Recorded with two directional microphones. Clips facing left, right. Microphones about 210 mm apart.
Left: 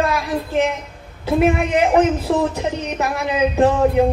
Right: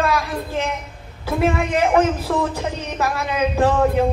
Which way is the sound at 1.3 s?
20° left (ahead or behind).